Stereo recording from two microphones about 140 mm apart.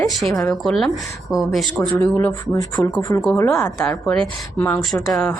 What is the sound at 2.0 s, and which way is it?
A woman's voice, 20° left (ahead or behind).